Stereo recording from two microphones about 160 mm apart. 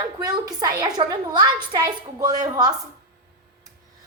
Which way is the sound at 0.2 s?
25° right (ahead or behind).